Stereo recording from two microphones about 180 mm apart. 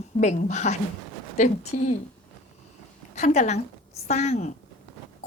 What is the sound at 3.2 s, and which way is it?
A woman's voice, 40° left (ahead or behind).